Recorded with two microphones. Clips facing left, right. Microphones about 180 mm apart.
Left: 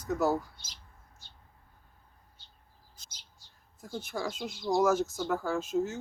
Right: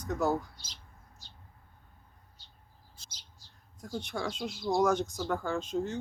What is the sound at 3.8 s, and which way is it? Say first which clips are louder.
Speech: even; 5° left (ahead or behind).